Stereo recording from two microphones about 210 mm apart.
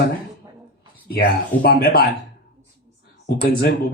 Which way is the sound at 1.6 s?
45° left (ahead or behind).